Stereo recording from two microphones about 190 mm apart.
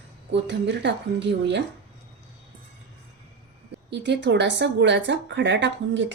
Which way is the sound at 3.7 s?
65° right (ahead or behind).